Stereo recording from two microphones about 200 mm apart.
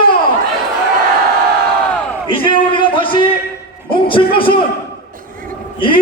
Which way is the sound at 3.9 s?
25° left (ahead or behind).